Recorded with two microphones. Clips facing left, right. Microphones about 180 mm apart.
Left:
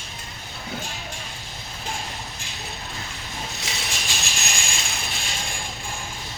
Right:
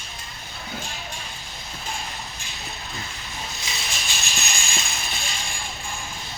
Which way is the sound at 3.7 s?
70° left (ahead or behind).